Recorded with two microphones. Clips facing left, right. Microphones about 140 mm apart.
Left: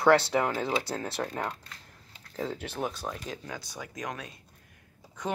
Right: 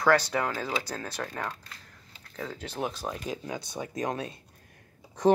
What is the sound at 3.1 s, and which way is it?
Speech, 15° right (ahead or behind).